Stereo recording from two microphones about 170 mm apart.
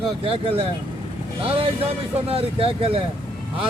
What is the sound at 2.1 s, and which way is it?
Speech, 35° right (ahead or behind).